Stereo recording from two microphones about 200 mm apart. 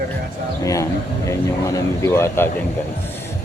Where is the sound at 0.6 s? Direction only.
15° left (ahead or behind).